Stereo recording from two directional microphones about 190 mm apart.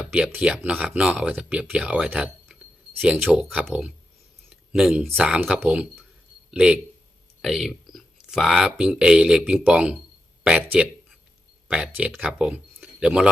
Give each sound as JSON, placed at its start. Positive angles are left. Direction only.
{"t": 0.0, "sound": "speech", "side_deg": -5}